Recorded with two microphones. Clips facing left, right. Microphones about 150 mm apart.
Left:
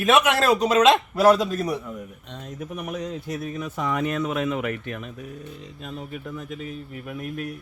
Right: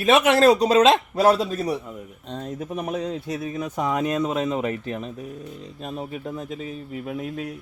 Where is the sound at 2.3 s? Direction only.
35° right (ahead or behind).